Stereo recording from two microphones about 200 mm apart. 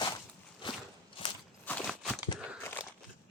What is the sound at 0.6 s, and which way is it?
Walk, 25° left (ahead or behind).